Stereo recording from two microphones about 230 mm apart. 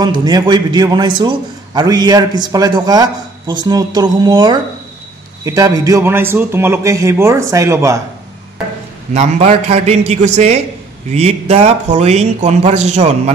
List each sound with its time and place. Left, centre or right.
0.0 s a man's voice: centre
9.1 s speech: right